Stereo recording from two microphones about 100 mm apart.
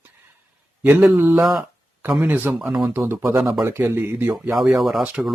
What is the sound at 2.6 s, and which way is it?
Speech, 5° right (ahead or behind).